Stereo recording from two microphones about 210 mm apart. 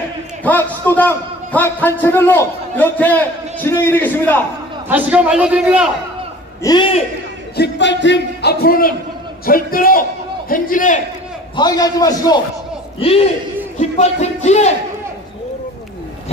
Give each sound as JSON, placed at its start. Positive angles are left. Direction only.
{"t": 0.4, "sound": "a man's voice", "side_deg": 10}
{"t": 4.8, "sound": "a man's voice", "side_deg": -10}
{"t": 6.6, "sound": "a man's voice", "side_deg": 20}
{"t": 7.5, "sound": "a man's voice", "side_deg": 55}
{"t": 11.5, "sound": "a man's voice", "side_deg": 20}
{"t": 13.0, "sound": "a man's voice", "side_deg": 25}